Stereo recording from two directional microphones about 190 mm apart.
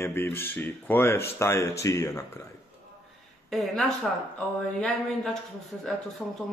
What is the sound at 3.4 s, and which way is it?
Speech, centre (ahead or behind).